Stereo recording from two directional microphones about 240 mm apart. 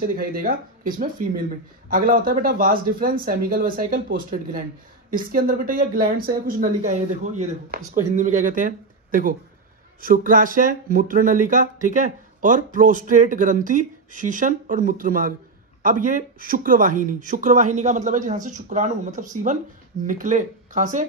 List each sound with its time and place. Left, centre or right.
0.1 s speech: right